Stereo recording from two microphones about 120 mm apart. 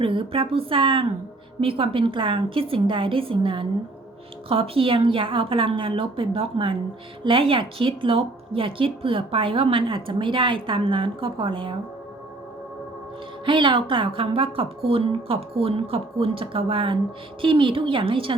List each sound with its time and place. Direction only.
0.0 s speech: 45° right (ahead or behind)
13.4 s speech: 45° right (ahead or behind)